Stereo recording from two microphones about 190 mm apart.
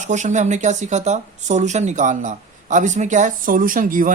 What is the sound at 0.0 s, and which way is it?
Speech, 40° right (ahead or behind).